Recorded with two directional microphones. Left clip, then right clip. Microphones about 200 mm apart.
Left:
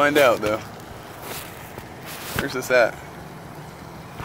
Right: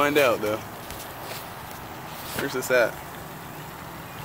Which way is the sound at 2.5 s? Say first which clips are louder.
Left 3 dB; 30° right (ahead or behind).